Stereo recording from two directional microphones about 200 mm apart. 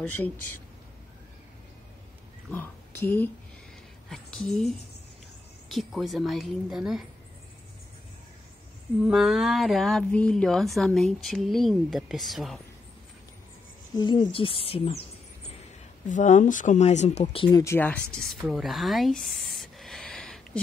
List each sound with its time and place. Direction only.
2.5 s speech: 10° left (ahead or behind)
9.0 s speech: centre (ahead or behind)
13.9 s speech: 20° left (ahead or behind)
16.1 s speech: 40° left (ahead or behind); by 18.2 s 5° left (ahead or behind)
18.3 s a sound: centre (ahead or behind)